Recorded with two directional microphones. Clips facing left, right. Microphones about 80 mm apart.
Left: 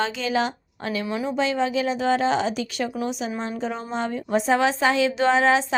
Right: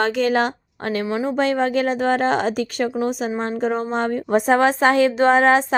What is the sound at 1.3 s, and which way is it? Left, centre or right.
A woman's voice, right.